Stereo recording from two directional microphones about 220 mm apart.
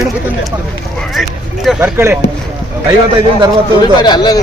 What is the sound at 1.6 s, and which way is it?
Speech, 10° right (ahead or behind).